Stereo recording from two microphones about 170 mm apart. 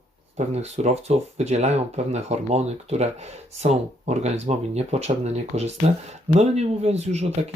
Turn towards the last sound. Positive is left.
turn(degrees=-40)  # may be behind; listen again after turning